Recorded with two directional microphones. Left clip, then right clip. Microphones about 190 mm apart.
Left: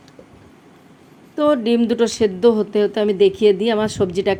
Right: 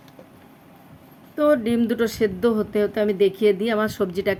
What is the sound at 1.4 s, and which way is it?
Speech, 5° left (ahead or behind).